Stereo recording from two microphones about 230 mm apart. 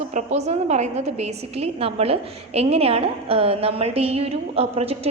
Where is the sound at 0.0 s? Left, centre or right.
Right.